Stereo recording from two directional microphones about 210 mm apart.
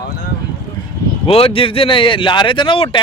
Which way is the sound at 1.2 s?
25° left (ahead or behind).